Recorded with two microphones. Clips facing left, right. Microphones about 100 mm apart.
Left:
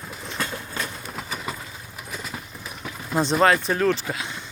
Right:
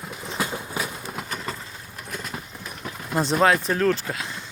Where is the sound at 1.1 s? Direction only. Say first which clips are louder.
Even; centre (ahead or behind).